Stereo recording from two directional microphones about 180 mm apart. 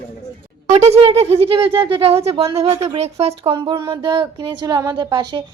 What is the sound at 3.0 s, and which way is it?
Speech, 35° right (ahead or behind).